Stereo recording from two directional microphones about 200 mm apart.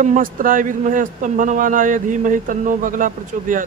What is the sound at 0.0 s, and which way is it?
A man's voice, 40° right (ahead or behind).